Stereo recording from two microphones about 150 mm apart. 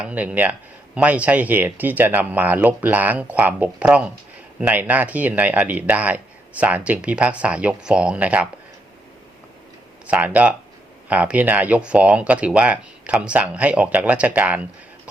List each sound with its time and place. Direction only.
0.0 s speech: 10° right (ahead or behind)
10.1 s speech: 10° right (ahead or behind)